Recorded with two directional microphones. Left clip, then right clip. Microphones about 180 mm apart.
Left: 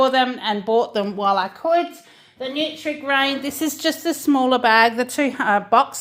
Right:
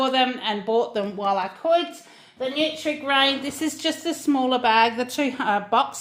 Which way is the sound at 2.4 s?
10° left (ahead or behind).